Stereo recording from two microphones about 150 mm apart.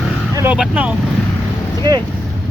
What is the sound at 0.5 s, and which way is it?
Speech, 5° right (ahead or behind).